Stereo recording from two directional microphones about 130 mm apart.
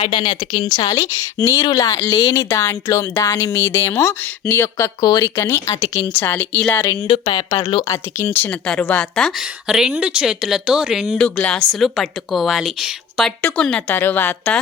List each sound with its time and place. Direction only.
0.0 s a woman's voice: 35° left (ahead or behind); by 4.9 s 15° left (ahead or behind)
4.9 s a woman's voice: 30° left (ahead or behind)
5.3 s speech: 20° left (ahead or behind)
6.8 s a woman's voice: 25° left (ahead or behind)
7.9 s a woman's voice: 20° left (ahead or behind); by 13.3 s 5° right (ahead or behind)
13.4 s speech: 10° left (ahead or behind)